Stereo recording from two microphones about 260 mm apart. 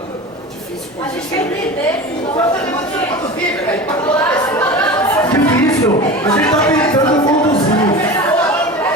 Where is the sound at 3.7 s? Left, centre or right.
Centre.